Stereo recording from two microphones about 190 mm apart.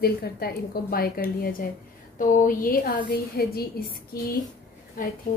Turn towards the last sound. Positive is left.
turn(degrees=40)  # may be behind; listen again after turning